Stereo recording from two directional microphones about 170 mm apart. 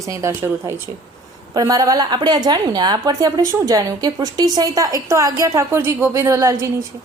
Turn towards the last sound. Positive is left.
turn(degrees=-15)  # may be behind; listen again after turning